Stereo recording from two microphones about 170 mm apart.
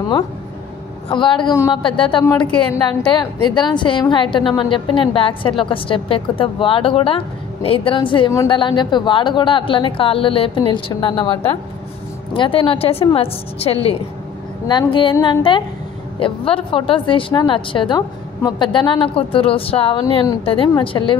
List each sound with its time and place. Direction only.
1.0 s a woman's voice: 30° left (ahead or behind)
2.2 s a woman's voice: 15° left (ahead or behind)
12.4 s a woman's voice: 30° left (ahead or behind)